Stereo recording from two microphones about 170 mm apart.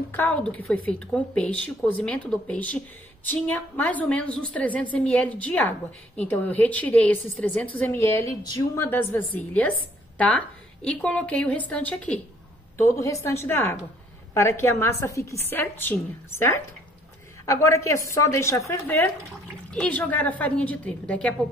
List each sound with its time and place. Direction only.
0.1 s a woman's voice: 10° left (ahead or behind)